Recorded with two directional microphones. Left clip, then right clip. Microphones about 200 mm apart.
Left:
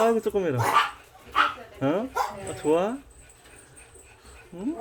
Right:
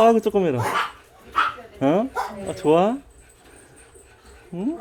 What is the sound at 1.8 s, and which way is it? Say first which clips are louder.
Speech: right 5 dB; 30° right (ahead or behind).